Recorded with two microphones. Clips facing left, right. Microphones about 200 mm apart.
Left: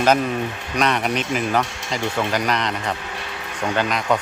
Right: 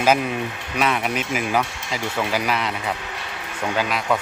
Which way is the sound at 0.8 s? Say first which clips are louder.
Left 2 dB; 5° right (ahead or behind).